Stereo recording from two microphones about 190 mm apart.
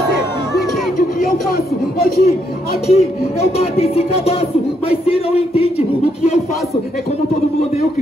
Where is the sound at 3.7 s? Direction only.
30° left (ahead or behind).